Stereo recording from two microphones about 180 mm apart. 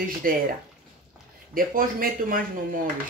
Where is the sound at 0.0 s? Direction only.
55° right (ahead or behind).